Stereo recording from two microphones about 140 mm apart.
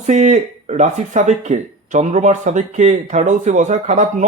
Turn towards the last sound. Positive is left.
turn(degrees=-60)  # may be behind; listen again after turning